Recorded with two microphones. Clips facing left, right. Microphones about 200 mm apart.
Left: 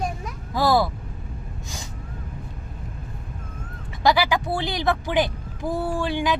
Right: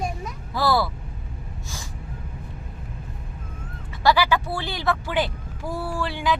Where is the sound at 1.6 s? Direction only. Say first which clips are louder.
Even; 15° left (ahead or behind).